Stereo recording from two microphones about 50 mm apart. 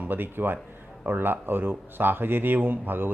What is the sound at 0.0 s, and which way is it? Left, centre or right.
A man's voice, right.